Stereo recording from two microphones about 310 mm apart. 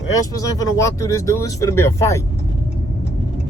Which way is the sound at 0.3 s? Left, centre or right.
Centre.